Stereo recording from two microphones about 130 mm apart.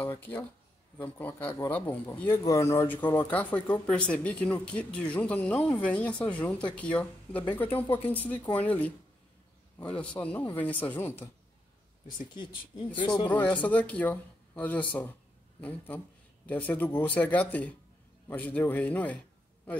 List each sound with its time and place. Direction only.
0.0 s a man's voice: 15° left (ahead or behind)
13.0 s speech: 35° left (ahead or behind)
13.3 s a man's voice: 10° left (ahead or behind)